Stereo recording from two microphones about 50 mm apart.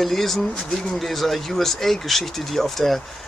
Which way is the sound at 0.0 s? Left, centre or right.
Centre.